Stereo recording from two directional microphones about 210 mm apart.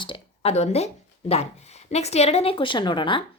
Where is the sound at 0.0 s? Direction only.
25° left (ahead or behind).